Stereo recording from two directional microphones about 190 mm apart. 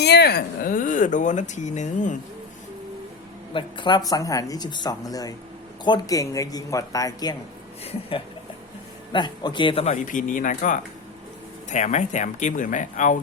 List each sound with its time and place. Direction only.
0.0 s speech: 60° left (ahead or behind); by 2.1 s 40° left (ahead or behind)
3.5 s speech: 25° left (ahead or behind)
9.1 s speech: 25° left (ahead or behind); by 13.1 s 40° left (ahead or behind)